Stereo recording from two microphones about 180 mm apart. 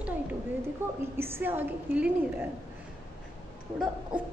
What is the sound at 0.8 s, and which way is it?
A woman's voice, 10° right (ahead or behind).